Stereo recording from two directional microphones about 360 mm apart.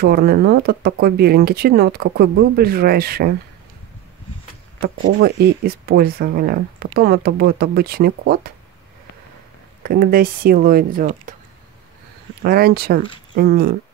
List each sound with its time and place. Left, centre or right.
0.0 s speech: right
4.8 s speech: right
9.8 s speech: right
12.4 s speech: right